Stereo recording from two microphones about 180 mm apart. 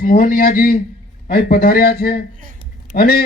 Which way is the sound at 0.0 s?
55° left (ahead or behind).